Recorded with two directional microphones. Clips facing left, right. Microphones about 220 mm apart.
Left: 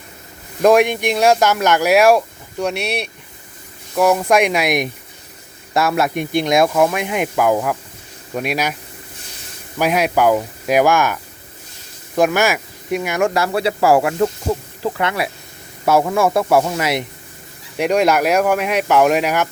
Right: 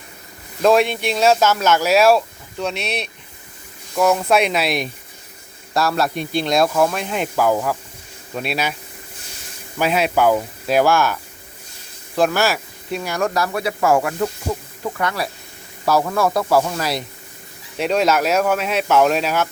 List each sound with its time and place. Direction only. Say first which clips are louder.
0.6 s speech: left 3 dB; 15° left (ahead or behind)
9.7 s speech: left 2 dB; 10° left (ahead or behind)